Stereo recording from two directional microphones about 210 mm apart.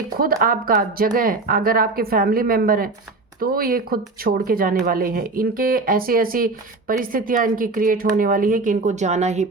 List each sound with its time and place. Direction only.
0.2 s speech: 40° right (ahead or behind)